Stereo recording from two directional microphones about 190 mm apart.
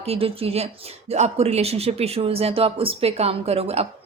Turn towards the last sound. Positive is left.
turn(degrees=-30)  # may be behind; listen again after turning